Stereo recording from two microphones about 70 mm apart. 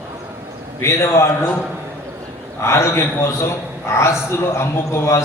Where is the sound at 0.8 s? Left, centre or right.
Left.